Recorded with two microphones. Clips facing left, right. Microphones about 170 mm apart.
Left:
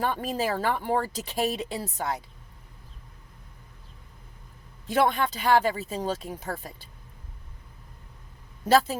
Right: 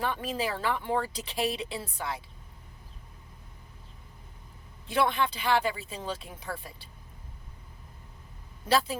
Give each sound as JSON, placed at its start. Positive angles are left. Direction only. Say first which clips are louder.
{"t": 0.0, "sound": "speech", "louder": "left 3 dB", "side_deg": 40}
{"t": 4.9, "sound": "speech", "louder": "left 3 dB", "side_deg": 45}
{"t": 8.6, "sound": "speech", "louder": "left 5 dB", "side_deg": 45}